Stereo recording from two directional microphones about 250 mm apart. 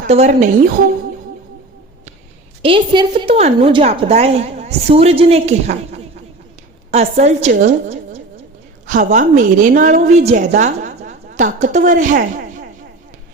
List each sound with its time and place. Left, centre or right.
0.1 s a woman's voice: right
2.6 s a woman's voice: right